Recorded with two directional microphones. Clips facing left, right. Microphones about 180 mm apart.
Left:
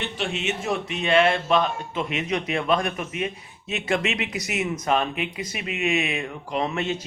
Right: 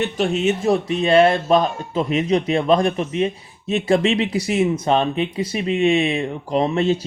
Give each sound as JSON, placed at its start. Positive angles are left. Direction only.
{"t": 0.0, "sound": "speech", "side_deg": -40}